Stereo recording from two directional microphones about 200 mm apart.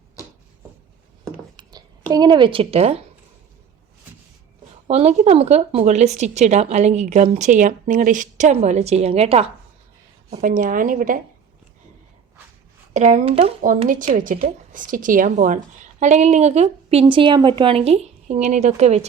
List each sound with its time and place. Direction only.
1.5 s speech: 20° right (ahead or behind)
4.9 s speech: 30° right (ahead or behind)
10.2 s speech: 40° right (ahead or behind)
12.9 s speech: 35° right (ahead or behind)
13.8 s a woman's voice: 40° right (ahead or behind)